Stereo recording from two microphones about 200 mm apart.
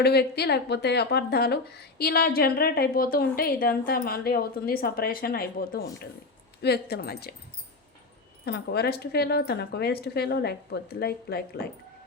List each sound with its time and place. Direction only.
0.0 s speech: 55° left (ahead or behind)
8.4 s speech: 55° left (ahead or behind)